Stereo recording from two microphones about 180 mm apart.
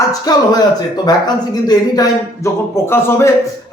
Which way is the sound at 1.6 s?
20° left (ahead or behind).